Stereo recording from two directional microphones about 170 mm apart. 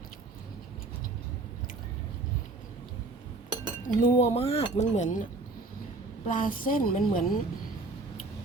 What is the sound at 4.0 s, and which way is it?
Speech, 40° left (ahead or behind).